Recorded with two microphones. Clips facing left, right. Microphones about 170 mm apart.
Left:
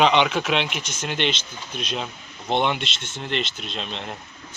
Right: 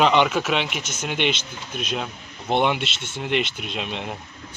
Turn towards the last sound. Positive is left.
turn(degrees=-10)  # may be behind; listen again after turning